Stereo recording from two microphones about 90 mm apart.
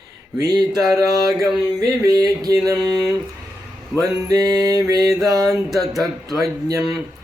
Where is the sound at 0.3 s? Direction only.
45° right (ahead or behind).